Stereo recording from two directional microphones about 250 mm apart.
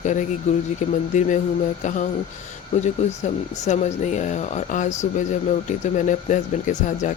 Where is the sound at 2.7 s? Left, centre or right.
Left.